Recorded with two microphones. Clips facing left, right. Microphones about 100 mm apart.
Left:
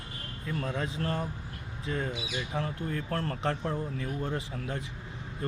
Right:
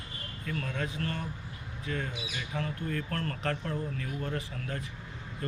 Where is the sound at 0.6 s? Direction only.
30° left (ahead or behind).